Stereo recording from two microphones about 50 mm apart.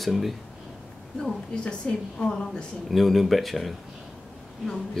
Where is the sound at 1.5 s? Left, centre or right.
Left.